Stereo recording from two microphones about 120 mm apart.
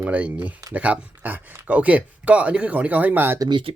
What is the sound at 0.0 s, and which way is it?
Speech, 10° right (ahead or behind).